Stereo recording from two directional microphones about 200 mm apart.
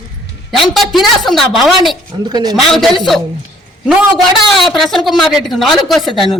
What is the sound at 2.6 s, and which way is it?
Speech, centre (ahead or behind).